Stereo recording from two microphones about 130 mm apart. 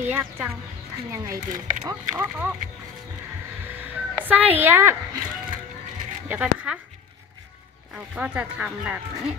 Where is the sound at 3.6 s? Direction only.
15° right (ahead or behind).